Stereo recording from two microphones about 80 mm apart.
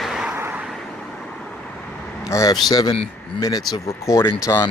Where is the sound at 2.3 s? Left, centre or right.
Left.